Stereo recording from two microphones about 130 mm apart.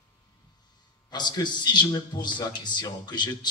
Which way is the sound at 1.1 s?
35° left (ahead or behind).